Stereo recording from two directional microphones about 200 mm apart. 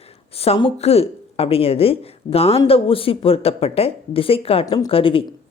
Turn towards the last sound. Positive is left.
turn(degrees=25)  # may be behind; listen again after turning